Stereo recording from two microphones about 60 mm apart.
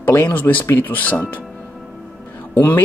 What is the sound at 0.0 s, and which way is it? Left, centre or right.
Speech, left.